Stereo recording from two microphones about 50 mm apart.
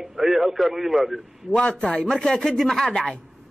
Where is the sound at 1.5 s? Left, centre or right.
Centre.